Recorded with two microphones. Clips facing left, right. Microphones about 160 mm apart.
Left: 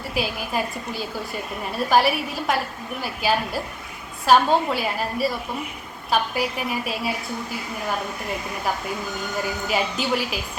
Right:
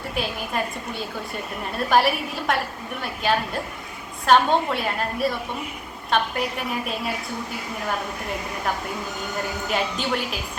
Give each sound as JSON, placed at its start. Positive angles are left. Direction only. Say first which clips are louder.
{"t": 0.1, "sound": "a woman's voice", "louder": "left 2 dB", "side_deg": 5}
{"t": 9.6, "sound": "a woman's voice", "louder": "left 1 dB", "side_deg": 5}